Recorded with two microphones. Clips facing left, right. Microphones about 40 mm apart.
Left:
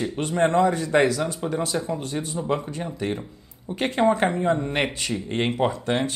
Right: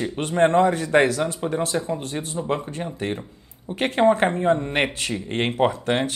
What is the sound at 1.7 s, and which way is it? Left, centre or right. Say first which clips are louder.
Speech: right 1 dB; centre.